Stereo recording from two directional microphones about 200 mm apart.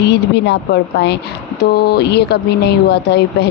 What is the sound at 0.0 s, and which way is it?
A woman's voice, 60° left (ahead or behind).